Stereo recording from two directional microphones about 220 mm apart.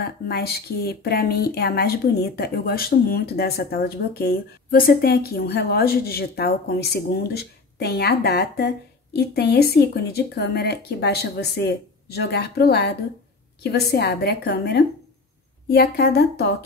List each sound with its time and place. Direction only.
0.0 s speech: 45° left (ahead or behind)